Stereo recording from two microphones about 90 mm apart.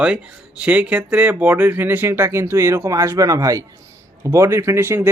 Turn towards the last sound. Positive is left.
turn(degrees=-25)  # may be behind; listen again after turning